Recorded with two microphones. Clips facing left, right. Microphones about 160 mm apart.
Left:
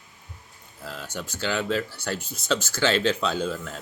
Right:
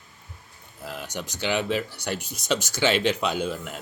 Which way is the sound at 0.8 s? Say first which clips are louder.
Right 1 dB; 15° right (ahead or behind).